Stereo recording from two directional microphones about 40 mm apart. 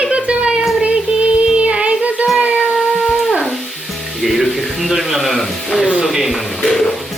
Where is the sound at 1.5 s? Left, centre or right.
Right.